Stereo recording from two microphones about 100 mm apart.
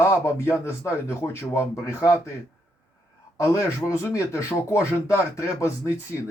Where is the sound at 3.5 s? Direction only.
30° left (ahead or behind).